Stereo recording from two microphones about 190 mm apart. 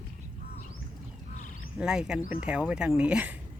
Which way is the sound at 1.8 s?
5° right (ahead or behind).